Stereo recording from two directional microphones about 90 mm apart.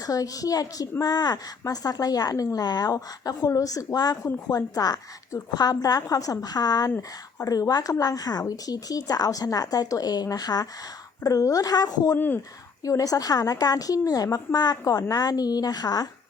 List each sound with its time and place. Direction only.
0.0 s a woman's voice: 40° left (ahead or behind)
12.1 s speech: 20° left (ahead or behind)
12.8 s a woman's voice: 40° left (ahead or behind)